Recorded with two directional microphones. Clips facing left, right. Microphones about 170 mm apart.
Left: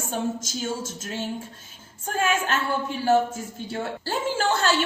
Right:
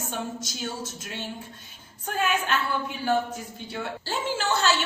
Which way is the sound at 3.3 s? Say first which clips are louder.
Left 4 dB; 45° left (ahead or behind).